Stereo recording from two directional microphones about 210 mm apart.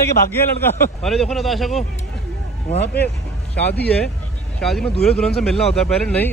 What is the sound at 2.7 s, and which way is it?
Speech, 50° left (ahead or behind).